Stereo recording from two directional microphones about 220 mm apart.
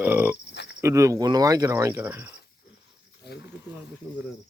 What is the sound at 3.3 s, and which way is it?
Speech, 45° left (ahead or behind).